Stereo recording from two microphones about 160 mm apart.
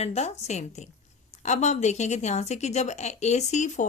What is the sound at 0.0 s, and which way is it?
A woman's voice, 40° left (ahead or behind).